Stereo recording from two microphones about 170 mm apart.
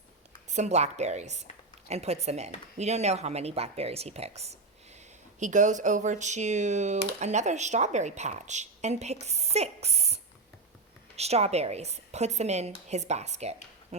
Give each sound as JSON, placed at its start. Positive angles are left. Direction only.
{"t": 0.4, "sound": "a woman's voice", "side_deg": -45}
{"t": 11.2, "sound": "speech", "side_deg": -40}